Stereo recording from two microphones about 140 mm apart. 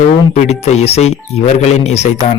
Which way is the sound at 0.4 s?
50° left (ahead or behind).